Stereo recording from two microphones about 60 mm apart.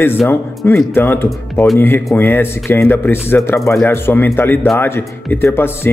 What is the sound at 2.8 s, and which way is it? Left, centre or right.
Speech, left.